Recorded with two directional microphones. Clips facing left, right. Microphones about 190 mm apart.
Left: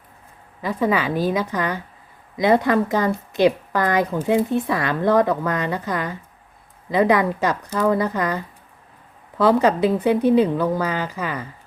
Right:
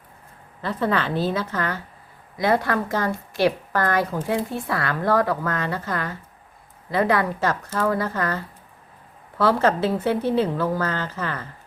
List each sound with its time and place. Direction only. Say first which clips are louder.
0.6 s a woman's voice: left 3 dB; 10° left (ahead or behind)